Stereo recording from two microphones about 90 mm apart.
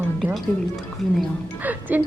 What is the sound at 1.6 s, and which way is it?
Speech, 20° right (ahead or behind).